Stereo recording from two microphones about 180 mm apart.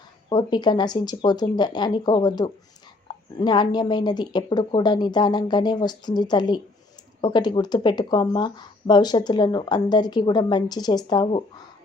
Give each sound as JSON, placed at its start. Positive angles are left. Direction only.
{"t": 0.3, "sound": "speech", "side_deg": 25}